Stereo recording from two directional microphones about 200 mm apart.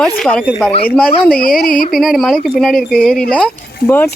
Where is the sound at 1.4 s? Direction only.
45° left (ahead or behind).